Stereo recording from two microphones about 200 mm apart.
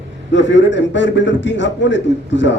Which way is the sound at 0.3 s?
65° left (ahead or behind).